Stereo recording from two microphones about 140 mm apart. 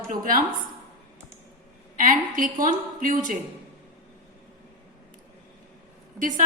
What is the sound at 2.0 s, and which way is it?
A woman's voice, 70° right (ahead or behind).